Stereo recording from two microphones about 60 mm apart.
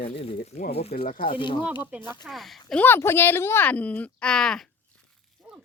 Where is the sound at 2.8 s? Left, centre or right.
Left.